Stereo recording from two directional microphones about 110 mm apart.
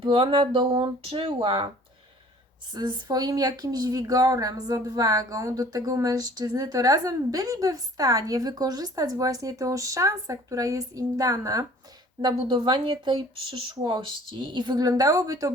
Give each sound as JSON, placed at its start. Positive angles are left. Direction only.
{"t": 0.0, "sound": "speech", "side_deg": -50}
{"t": 2.7, "sound": "speech", "side_deg": -40}
{"t": 12.2, "sound": "speech", "side_deg": -45}